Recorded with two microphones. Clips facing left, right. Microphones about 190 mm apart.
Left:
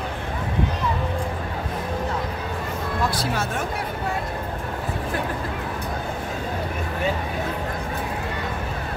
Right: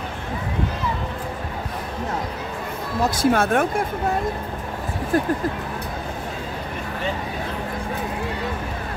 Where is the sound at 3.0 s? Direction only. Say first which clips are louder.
Right 9 dB; 55° right (ahead or behind).